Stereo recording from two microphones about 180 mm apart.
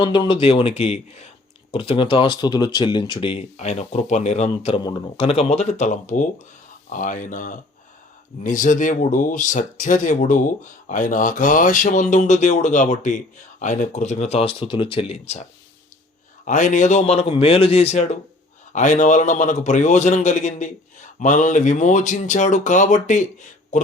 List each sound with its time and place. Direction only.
0.0 s speech: 25° left (ahead or behind)
16.5 s speech: 45° left (ahead or behind)